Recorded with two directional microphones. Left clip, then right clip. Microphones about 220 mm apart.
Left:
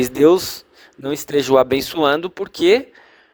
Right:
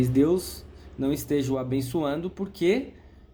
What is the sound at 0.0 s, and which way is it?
Speech, 45° left (ahead or behind).